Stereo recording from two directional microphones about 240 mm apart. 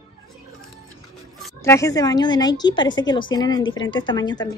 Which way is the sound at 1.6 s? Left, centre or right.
Centre.